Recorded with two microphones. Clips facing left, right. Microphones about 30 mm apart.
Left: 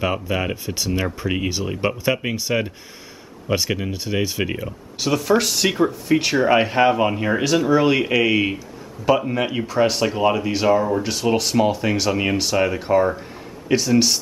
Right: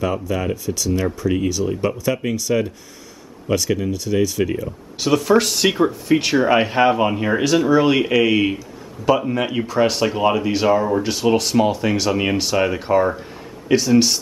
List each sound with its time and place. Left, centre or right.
0.0 s speech: left
4.9 s speech: centre